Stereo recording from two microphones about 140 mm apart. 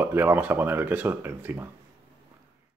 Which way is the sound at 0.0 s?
15° right (ahead or behind).